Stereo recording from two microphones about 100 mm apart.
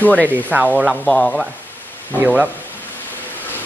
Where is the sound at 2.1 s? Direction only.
15° right (ahead or behind).